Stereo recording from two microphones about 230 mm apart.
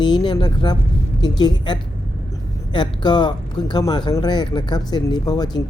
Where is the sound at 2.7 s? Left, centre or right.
Centre.